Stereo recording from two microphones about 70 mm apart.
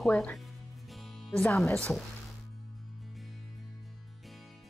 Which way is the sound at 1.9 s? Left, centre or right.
Centre.